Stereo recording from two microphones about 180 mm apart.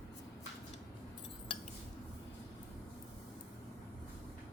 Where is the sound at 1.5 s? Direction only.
30° left (ahead or behind).